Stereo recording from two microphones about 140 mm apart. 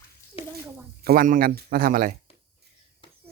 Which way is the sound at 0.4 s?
40° left (ahead or behind).